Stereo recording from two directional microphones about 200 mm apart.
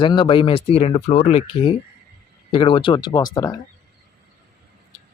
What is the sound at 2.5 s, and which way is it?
Speech, 25° left (ahead or behind).